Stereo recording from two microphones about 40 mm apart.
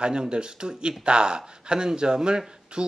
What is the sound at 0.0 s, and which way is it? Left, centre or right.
Speech, right.